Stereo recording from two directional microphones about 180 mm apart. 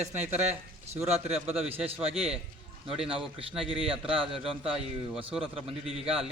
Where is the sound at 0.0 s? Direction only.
40° right (ahead or behind).